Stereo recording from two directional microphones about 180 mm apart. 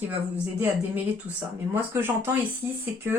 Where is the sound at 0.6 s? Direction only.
10° right (ahead or behind).